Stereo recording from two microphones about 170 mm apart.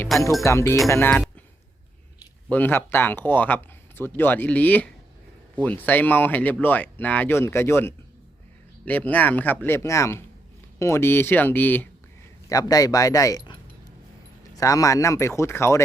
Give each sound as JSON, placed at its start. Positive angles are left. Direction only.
{"t": 0.4, "sound": "speech", "side_deg": 15}
{"t": 2.5, "sound": "speech", "side_deg": 10}
{"t": 12.5, "sound": "speech", "side_deg": 20}